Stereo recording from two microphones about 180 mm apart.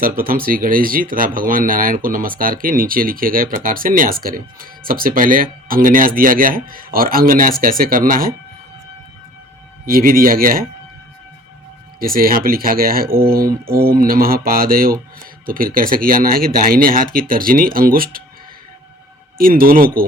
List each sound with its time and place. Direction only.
0.0 s speech: 55° right (ahead or behind)
9.8 s speech: 55° right (ahead or behind)
11.9 s mantra: 55° right (ahead or behind)
15.4 s speech: 50° right (ahead or behind)
19.4 s speech: 55° right (ahead or behind)